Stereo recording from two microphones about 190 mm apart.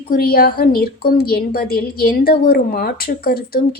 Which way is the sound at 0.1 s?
55° left (ahead or behind).